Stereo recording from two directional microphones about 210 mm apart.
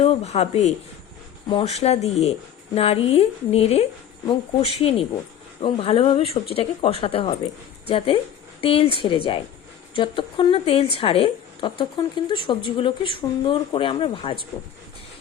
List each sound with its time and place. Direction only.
0.0 s a woman's voice: 30° left (ahead or behind)